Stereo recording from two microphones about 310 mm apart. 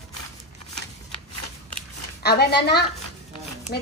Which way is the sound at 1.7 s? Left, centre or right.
Left.